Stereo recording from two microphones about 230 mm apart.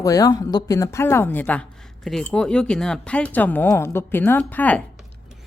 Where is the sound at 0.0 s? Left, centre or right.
Centre.